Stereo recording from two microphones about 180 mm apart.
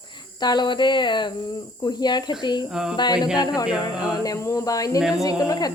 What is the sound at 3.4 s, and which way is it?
Speech, 20° left (ahead or behind).